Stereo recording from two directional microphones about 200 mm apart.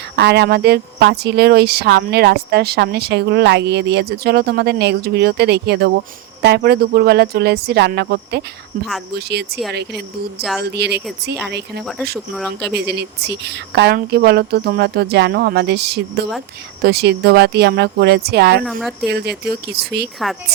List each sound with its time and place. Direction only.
0.2 s speech: 55° right (ahead or behind)
10.6 s speech: 55° right (ahead or behind)
18.6 s speech: centre (ahead or behind)
19.0 s speech: 55° right (ahead or behind)